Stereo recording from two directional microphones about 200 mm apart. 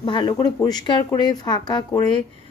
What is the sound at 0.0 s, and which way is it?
Speech, 25° left (ahead or behind).